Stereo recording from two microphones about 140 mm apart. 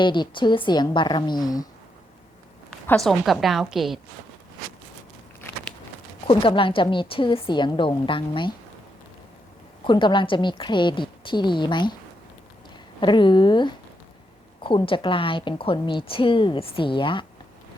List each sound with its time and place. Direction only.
0.0 s a woman's voice: 35° left (ahead or behind)
2.9 s a woman's voice: centre (ahead or behind)
6.2 s a woman's voice: 40° left (ahead or behind)
9.8 s a woman's voice: 35° left (ahead or behind)
13.0 s a woman's voice: 35° left (ahead or behind)